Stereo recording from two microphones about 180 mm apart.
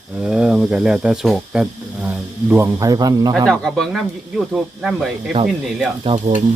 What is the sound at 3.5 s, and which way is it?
A man's voice, centre (ahead or behind).